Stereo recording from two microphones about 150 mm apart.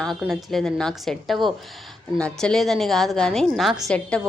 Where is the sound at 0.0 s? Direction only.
Centre (ahead or behind).